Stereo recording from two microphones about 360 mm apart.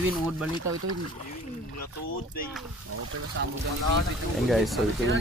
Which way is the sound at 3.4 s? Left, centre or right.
Right.